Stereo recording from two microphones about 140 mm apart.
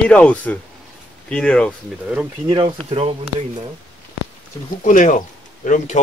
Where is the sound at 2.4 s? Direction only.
35° right (ahead or behind).